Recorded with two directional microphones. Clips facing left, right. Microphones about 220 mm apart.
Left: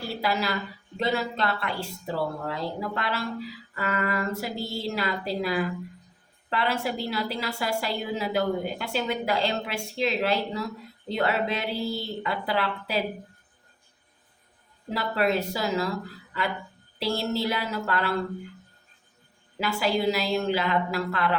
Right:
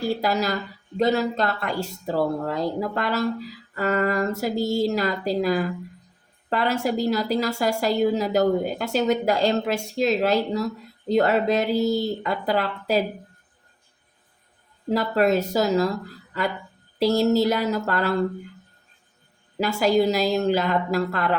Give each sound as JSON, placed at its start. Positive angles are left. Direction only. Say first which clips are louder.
{"t": 0.1, "sound": "a woman's voice", "louder": "right 1 dB", "side_deg": -45}
{"t": 14.8, "sound": "a woman's voice", "louder": "right 6 dB", "side_deg": -45}
{"t": 17.0, "sound": "a woman's voice", "louder": "right 8 dB", "side_deg": -40}
{"t": 19.5, "sound": "a woman's voice", "louder": "right 6 dB", "side_deg": -45}